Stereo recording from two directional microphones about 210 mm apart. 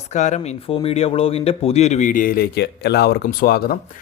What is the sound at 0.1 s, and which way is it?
A man's voice, 35° left (ahead or behind).